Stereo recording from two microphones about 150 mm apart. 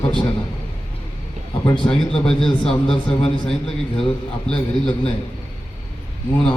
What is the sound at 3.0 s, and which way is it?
Speech, 35° left (ahead or behind).